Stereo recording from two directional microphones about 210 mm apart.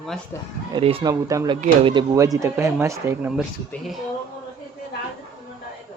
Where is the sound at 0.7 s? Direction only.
25° right (ahead or behind).